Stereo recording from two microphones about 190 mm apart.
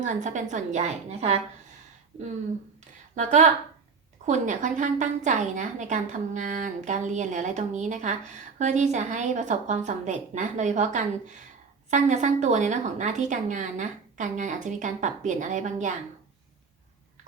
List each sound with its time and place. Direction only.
0.0 s a woman's voice: 40° right (ahead or behind)
3.2 s a woman's voice: 40° right (ahead or behind)